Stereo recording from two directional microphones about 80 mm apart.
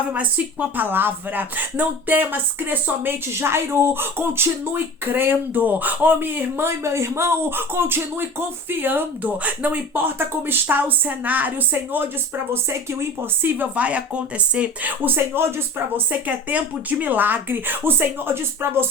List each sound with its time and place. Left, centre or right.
0.1 s speech: centre
12.9 s speech: right
13.6 s speech: centre
16.1 s speech: centre